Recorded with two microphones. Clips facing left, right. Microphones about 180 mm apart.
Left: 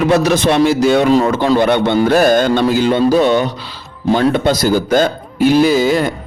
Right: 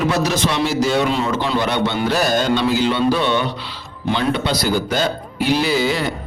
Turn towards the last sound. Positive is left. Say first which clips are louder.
# left 7 dB
turn(degrees=45)  # may be behind; listen again after turning